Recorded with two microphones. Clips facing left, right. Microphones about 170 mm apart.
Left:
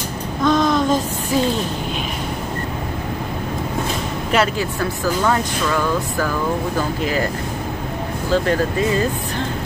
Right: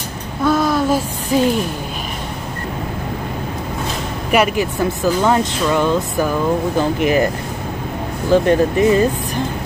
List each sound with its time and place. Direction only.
0.4 s a sound: 5° right (ahead or behind)
4.3 s speech: 15° right (ahead or behind)
8.3 s speech: 20° right (ahead or behind)